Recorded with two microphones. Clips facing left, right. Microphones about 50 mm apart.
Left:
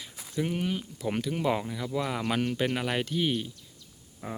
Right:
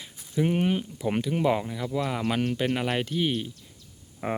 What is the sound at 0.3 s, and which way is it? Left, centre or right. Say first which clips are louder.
Speech: right 5 dB; right.